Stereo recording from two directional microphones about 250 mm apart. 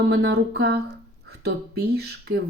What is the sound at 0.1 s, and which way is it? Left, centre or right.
Speech, right.